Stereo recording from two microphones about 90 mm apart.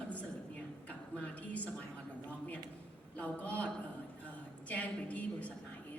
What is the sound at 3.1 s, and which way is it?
A woman's voice, 15° left (ahead or behind).